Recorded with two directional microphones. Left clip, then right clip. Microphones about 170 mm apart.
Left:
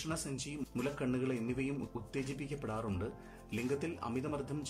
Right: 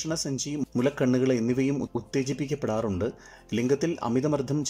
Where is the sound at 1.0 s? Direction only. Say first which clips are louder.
Right 13 dB; 45° right (ahead or behind).